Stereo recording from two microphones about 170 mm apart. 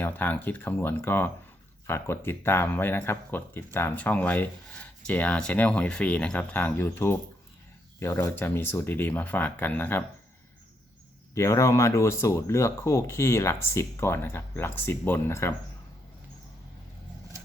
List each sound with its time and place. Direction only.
0.0 s speech: 10° left (ahead or behind)
11.3 s speech: 15° left (ahead or behind)